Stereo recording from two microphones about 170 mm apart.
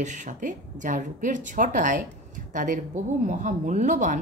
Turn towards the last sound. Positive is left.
turn(degrees=-45)  # may be behind; listen again after turning